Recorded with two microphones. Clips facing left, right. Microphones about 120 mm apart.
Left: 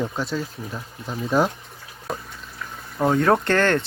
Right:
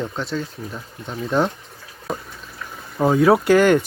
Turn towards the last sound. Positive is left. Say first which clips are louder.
# right 5 dB
turn(degrees=-10)  # may be behind; listen again after turning